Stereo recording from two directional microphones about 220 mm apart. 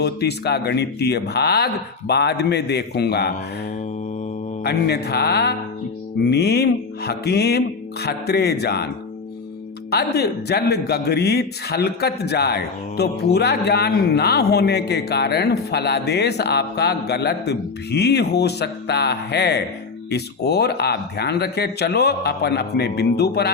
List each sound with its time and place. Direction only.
0.0 s a man's voice: 50° left (ahead or behind)
4.6 s a man's voice: 50° left (ahead or behind)
9.9 s a man's voice: 45° left (ahead or behind)